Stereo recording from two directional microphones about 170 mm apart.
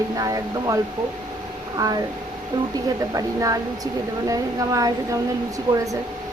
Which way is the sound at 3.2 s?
20° right (ahead or behind).